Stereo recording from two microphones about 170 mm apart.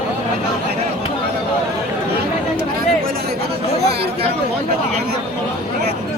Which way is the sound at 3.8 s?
70° right (ahead or behind).